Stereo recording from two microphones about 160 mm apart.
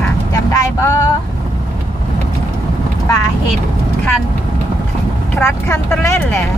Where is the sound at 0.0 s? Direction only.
20° left (ahead or behind).